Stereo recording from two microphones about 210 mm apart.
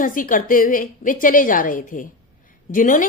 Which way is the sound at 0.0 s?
40° left (ahead or behind).